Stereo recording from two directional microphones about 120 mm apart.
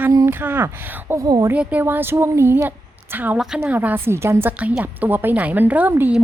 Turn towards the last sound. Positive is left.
turn(degrees=-15)  # may be behind; listen again after turning